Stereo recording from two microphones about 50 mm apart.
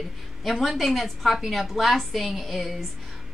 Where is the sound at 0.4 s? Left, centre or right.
Centre.